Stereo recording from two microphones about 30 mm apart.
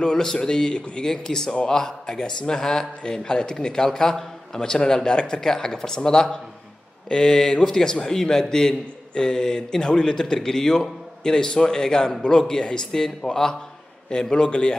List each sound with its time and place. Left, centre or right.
0.0 s a man's voice: left
14.3 s a man's voice: left